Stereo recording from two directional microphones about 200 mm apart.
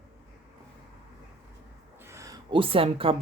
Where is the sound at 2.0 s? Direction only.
15° right (ahead or behind).